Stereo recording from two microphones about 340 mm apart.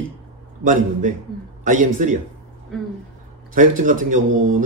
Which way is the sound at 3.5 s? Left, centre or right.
Right.